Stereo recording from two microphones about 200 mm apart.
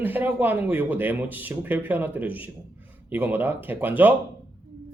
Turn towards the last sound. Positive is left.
turn(degrees=-10)  # may be behind; listen again after turning